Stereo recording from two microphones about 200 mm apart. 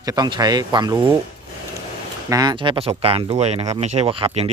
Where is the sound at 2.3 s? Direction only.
20° right (ahead or behind).